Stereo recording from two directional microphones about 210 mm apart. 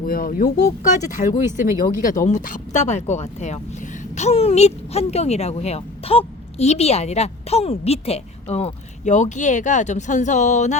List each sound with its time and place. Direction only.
0.0 s speech: 45° left (ahead or behind)